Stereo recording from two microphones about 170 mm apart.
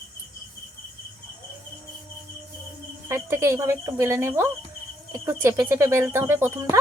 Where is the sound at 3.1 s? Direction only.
15° right (ahead or behind).